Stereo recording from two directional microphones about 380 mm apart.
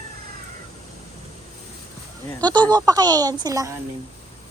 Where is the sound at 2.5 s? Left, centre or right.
Centre.